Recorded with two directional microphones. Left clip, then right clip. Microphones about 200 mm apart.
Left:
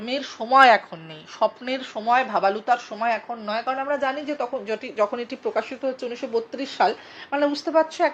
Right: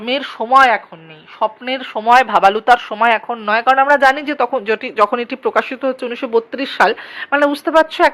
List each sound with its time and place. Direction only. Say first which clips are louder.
0.0 s speech: right 9 dB; 25° right (ahead or behind)
0.5 s speech: right 4 dB; centre (ahead or behind)
1.4 s speech: right 5 dB; 15° right (ahead or behind); by 8.1 s 40° right (ahead or behind)